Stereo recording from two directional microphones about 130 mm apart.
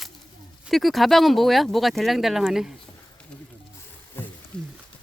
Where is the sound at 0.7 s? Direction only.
Centre (ahead or behind).